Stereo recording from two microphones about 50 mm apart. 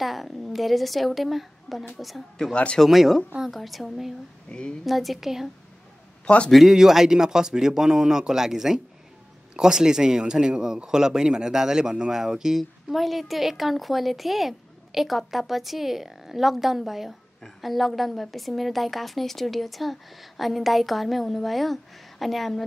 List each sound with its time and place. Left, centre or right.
0.0 s a man's voice: centre
2.5 s speech: left
2.8 s a man's voice: centre
4.5 s speech: left
4.8 s a man's voice: centre
6.2 s speech: centre
6.5 s a man's voice: centre